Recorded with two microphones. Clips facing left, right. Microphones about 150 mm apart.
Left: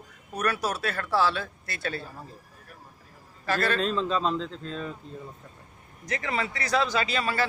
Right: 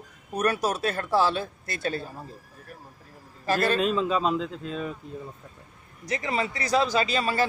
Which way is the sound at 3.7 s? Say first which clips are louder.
Right 2 dB; 10° right (ahead or behind).